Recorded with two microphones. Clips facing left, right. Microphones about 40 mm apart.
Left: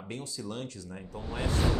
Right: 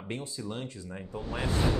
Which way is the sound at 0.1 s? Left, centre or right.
Right.